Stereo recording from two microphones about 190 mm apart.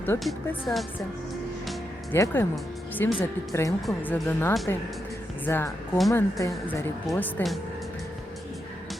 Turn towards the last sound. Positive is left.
turn(degrees=5)  # may be behind; listen again after turning